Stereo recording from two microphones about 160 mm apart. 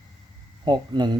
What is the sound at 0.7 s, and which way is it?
Speech, 25° right (ahead or behind).